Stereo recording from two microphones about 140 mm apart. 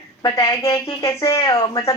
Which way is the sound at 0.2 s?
25° left (ahead or behind).